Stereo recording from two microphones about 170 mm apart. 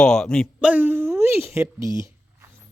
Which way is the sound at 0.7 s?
10° right (ahead or behind).